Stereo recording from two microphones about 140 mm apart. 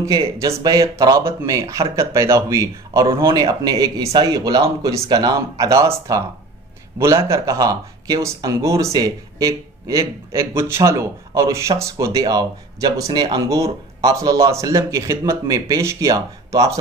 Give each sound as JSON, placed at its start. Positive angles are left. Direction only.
{"t": 0.0, "sound": "speech", "side_deg": -25}